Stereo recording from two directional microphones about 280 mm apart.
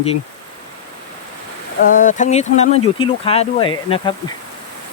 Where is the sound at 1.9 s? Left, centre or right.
Left.